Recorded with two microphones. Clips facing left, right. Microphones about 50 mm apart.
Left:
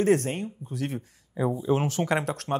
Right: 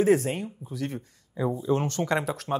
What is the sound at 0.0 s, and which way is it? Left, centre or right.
Speech, centre.